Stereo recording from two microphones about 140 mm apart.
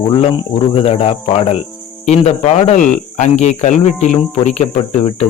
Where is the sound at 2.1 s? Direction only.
55° left (ahead or behind).